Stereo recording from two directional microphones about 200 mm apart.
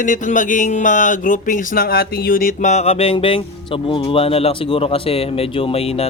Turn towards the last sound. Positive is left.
turn(degrees=30)  # may be behind; listen again after turning